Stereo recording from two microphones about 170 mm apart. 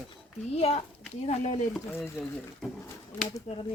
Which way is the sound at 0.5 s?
35° left (ahead or behind).